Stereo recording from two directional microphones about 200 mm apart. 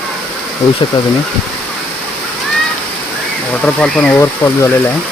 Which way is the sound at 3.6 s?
5° left (ahead or behind).